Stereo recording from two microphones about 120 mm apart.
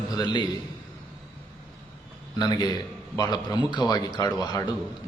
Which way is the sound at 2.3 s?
35° left (ahead or behind).